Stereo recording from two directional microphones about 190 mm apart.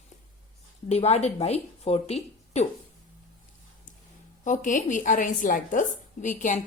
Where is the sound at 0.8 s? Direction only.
35° left (ahead or behind).